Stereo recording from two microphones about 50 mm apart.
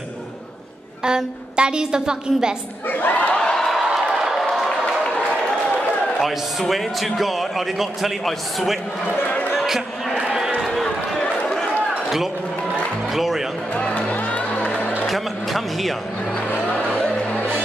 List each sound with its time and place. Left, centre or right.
1.0 s a woman's voice: centre
2.9 s crowd: left
3.3 s a sound: centre
4.1 s a sound: centre
6.7 s a man's voice: centre
9.2 s a sound: left
9.7 s a man's voice: centre
10.1 s run: centre
10.6 s run: centre
13.1 s a man's voice: centre
13.7 s music: left
14.1 s music: left
15.0 s speech: centre
16.9 s music: centre